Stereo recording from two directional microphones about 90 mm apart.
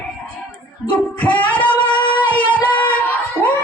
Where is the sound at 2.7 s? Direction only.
20° left (ahead or behind).